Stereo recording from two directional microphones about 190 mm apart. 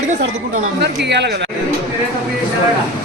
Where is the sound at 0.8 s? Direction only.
65° right (ahead or behind).